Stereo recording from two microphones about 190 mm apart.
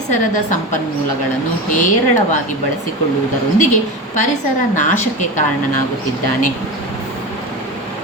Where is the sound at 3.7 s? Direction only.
40° left (ahead or behind).